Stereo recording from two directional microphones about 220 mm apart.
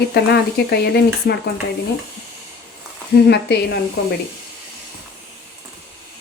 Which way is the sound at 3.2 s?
50° left (ahead or behind).